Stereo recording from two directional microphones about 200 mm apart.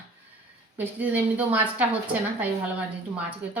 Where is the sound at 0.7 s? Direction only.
10° right (ahead or behind).